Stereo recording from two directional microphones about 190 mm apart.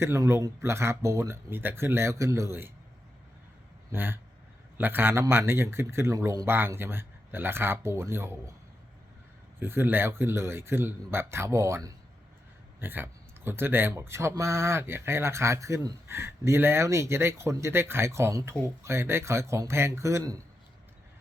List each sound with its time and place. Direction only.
0.0 s speech: 15° right (ahead or behind)
3.9 s speech: 10° right (ahead or behind)
9.6 s speech: 10° right (ahead or behind)